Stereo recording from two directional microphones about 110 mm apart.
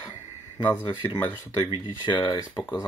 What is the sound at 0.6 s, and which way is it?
Speech, 15° left (ahead or behind).